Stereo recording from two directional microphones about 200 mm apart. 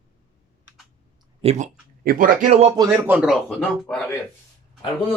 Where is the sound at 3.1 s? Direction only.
5° right (ahead or behind).